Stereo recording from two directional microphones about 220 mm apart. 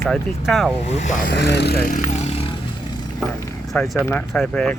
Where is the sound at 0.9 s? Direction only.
30° left (ahead or behind).